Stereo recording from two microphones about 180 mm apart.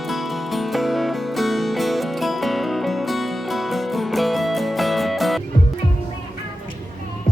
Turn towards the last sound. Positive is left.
turn(degrees=0)  # may be behind; listen again after turning